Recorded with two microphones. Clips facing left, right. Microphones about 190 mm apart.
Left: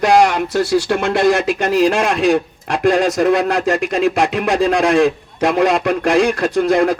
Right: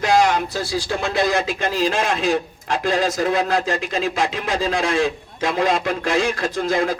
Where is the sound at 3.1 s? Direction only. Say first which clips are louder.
Left 5 dB; 70° left (ahead or behind).